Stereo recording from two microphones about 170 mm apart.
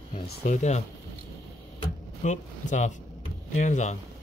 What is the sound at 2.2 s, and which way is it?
Speech, 45° left (ahead or behind).